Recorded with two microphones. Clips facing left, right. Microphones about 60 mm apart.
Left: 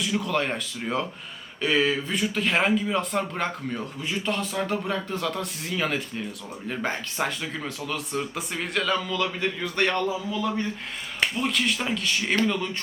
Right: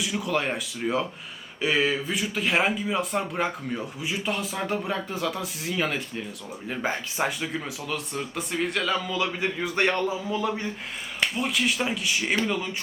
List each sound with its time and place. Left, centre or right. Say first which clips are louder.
0.0 s speech: left 1 dB; centre
11.3 s speech: right 2 dB; centre